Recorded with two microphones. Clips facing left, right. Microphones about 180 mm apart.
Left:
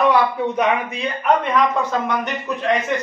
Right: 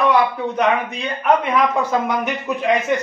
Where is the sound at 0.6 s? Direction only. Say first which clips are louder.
Right 3 dB; centre (ahead or behind).